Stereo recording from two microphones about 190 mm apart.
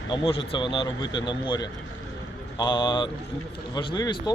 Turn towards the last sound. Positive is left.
turn(degrees=25)  # may be behind; listen again after turning